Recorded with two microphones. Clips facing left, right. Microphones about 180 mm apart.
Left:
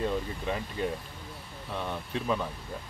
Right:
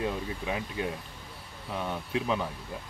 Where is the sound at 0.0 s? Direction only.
10° right (ahead or behind).